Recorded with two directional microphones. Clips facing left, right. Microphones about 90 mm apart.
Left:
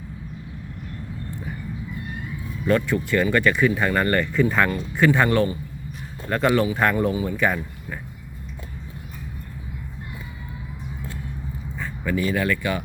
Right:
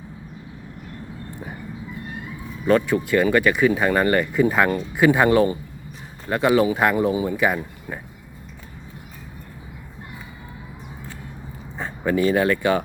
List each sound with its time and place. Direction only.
2.6 s speech: 20° right (ahead or behind)
11.8 s speech: 30° right (ahead or behind)